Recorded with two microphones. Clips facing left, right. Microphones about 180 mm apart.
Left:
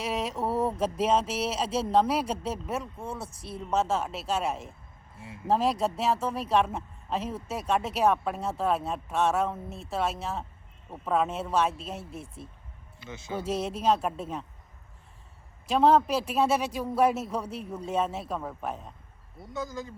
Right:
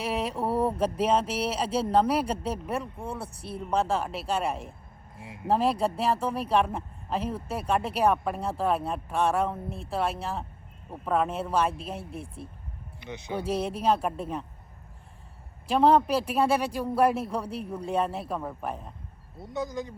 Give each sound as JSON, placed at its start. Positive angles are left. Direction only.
{"t": 0.0, "sound": "a sound", "side_deg": 0}
{"t": 0.8, "sound": "speech", "side_deg": 0}
{"t": 13.0, "sound": "speech", "side_deg": -20}
{"t": 13.5, "sound": "speech", "side_deg": 0}
{"t": 15.7, "sound": "speech", "side_deg": 0}
{"t": 19.4, "sound": "speech", "side_deg": -20}